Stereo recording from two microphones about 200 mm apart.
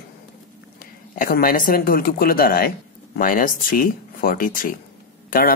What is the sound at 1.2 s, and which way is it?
Speech, 45° left (ahead or behind).